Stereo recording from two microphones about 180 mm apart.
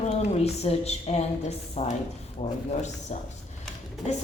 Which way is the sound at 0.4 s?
35° left (ahead or behind).